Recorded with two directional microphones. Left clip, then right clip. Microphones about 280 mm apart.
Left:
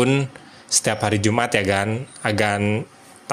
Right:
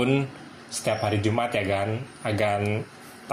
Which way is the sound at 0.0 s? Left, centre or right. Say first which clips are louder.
Left 4 dB; left.